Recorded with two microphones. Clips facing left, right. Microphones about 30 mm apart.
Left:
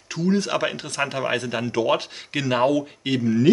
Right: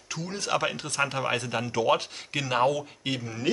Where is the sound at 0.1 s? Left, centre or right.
Centre.